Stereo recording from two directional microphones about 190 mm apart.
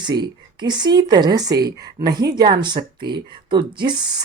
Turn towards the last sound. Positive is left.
turn(degrees=-25)  # may be behind; listen again after turning